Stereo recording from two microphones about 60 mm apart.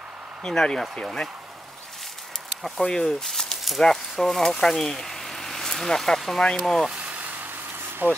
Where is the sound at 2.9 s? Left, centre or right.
Centre.